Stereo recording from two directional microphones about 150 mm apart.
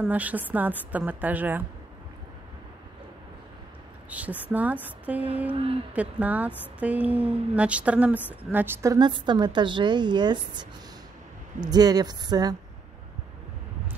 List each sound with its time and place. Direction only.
0.0 s a woman's voice: 10° right (ahead or behind)
4.1 s a woman's voice: 10° right (ahead or behind)
8.9 s a woman's voice: 30° right (ahead or behind)